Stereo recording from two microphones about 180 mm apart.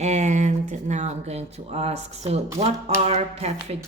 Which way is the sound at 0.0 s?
40° right (ahead or behind).